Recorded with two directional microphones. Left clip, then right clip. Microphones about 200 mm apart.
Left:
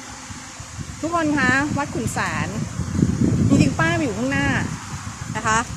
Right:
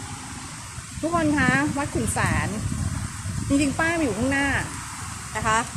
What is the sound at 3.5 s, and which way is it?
Speech, 20° left (ahead or behind).